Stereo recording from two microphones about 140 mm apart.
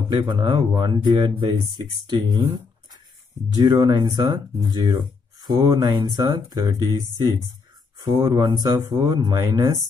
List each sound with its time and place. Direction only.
0.3 s speech: 35° right (ahead or behind)